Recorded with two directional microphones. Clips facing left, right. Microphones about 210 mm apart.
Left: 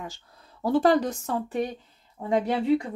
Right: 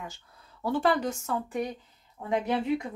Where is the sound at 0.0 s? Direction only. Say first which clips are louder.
Left 3 dB; 35° left (ahead or behind).